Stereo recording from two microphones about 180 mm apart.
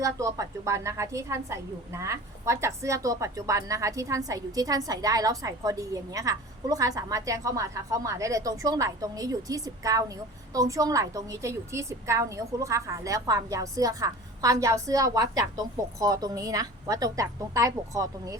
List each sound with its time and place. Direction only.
0.0 s a woman's voice: 20° right (ahead or behind)